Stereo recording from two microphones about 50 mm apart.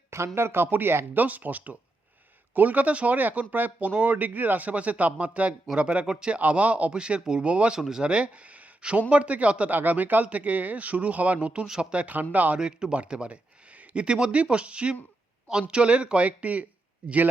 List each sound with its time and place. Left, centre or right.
0.3 s speech: right; by 6.4 s centre
6.4 s speech: right
6.9 s speech: centre
7.8 s speech: centre
8.0 s speech: right
12.5 s speech: centre